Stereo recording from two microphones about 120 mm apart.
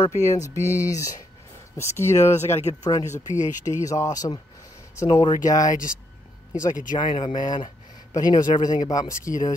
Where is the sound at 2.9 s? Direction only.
35° left (ahead or behind).